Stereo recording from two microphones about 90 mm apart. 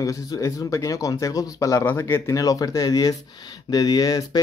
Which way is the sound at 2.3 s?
40° left (ahead or behind).